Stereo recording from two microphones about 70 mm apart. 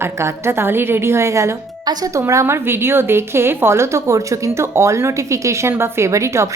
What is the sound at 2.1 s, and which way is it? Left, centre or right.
A woman's voice, right.